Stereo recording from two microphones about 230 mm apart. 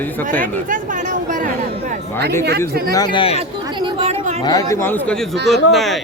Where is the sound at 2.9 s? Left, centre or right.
Centre.